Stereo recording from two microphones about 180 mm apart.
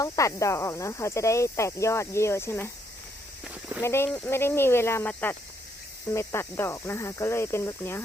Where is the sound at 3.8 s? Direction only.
15° left (ahead or behind).